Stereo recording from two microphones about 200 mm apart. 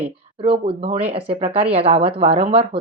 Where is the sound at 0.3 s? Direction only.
25° right (ahead or behind).